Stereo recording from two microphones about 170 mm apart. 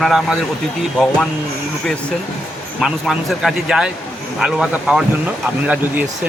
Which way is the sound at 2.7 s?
Centre (ahead or behind).